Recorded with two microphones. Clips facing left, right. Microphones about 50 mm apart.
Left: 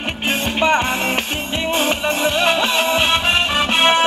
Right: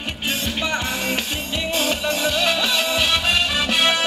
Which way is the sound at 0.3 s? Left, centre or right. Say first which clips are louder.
Left 8 dB; left.